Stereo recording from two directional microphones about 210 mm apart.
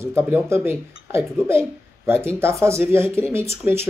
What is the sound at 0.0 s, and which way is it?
Speech, 10° right (ahead or behind).